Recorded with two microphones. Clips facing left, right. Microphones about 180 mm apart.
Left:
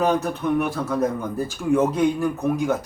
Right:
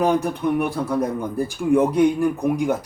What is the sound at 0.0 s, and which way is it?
Speech, 10° right (ahead or behind).